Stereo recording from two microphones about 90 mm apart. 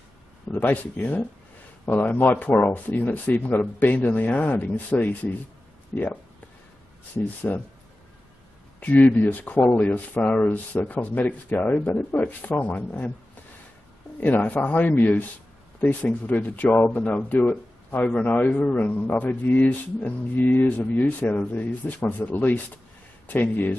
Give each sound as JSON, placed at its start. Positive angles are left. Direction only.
{"t": 0.5, "sound": "speech", "side_deg": 20}
{"t": 7.5, "sound": "speech", "side_deg": 15}
{"t": 8.7, "sound": "speech", "side_deg": 20}
{"t": 14.2, "sound": "speech", "side_deg": 20}